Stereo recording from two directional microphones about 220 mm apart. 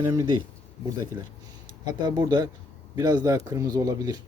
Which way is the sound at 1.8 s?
20° right (ahead or behind).